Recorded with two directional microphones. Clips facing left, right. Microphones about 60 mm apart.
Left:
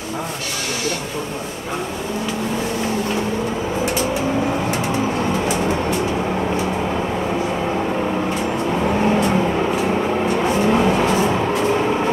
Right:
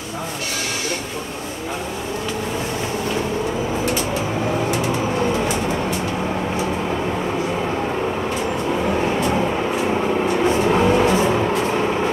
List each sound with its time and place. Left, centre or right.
10.7 s vehicle: centre